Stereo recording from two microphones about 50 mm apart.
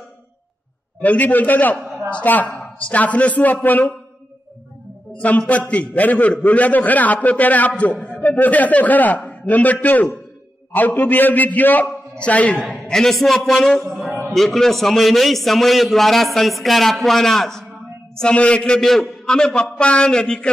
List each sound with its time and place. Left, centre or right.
1.0 s a man's voice: left
5.5 s a man's voice: left
12.8 s a man's voice: centre
18.3 s a man's voice: left
18.6 s a man's voice: centre